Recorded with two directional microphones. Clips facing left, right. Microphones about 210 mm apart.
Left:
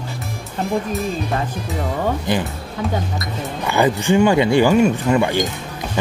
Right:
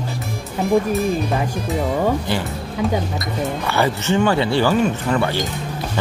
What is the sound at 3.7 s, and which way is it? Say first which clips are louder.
Speech: left 5 dB; 15° left (ahead or behind).